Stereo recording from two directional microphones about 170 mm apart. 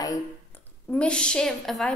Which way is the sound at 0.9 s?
5° left (ahead or behind).